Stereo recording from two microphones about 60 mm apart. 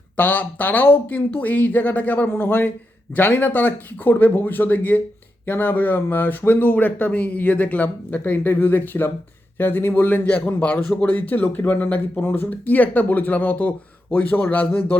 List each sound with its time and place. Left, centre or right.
0.2 s speech: left